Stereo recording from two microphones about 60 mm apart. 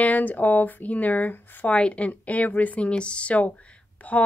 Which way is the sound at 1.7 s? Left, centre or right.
Centre.